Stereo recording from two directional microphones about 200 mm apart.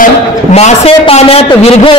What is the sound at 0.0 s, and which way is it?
A man's voice, 35° left (ahead or behind).